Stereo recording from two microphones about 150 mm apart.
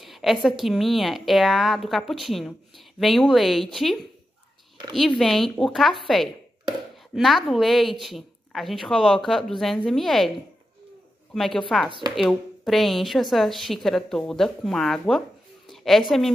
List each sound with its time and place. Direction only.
0.0 s a woman's voice: centre (ahead or behind)
5.2 s a woman's voice: centre (ahead or behind)
11.3 s a woman's voice: centre (ahead or behind)